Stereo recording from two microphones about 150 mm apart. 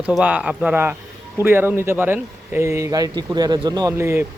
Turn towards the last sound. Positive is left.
turn(degrees=-15)  # may be behind; listen again after turning